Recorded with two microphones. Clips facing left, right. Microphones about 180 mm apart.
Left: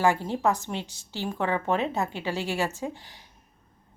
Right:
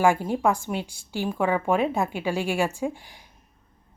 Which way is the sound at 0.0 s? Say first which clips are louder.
Right 3 dB; 15° right (ahead or behind).